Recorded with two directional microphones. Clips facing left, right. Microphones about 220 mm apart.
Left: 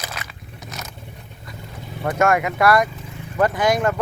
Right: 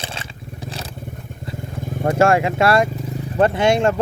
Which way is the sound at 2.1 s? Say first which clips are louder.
Right 3 dB; 30° right (ahead or behind).